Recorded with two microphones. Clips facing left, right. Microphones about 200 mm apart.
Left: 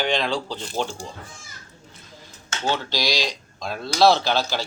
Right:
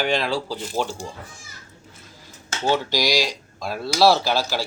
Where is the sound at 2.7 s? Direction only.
15° right (ahead or behind).